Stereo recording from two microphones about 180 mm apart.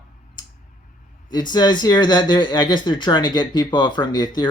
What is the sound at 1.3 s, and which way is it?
Speech, 25° left (ahead or behind).